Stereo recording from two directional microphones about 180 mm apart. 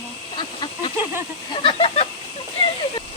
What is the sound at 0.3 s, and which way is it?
Duck, 25° left (ahead or behind).